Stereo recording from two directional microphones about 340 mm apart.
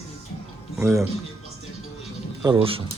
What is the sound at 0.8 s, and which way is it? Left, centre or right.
Speech, centre.